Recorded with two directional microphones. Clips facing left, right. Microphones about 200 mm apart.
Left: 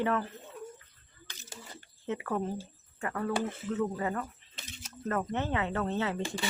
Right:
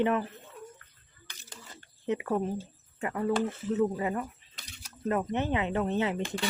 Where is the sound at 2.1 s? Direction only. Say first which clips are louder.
Right 3 dB; 15° right (ahead or behind).